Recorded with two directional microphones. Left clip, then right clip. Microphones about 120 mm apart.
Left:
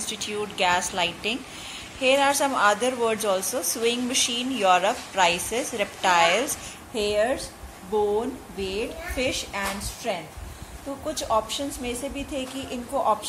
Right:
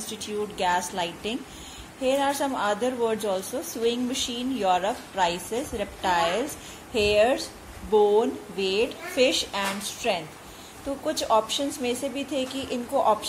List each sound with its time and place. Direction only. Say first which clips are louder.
0.0 s a woman's voice: left 2 dB; 30° right (ahead or behind)